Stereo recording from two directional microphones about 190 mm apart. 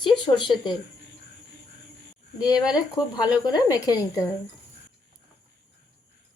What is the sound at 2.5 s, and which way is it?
Speech, 20° left (ahead or behind).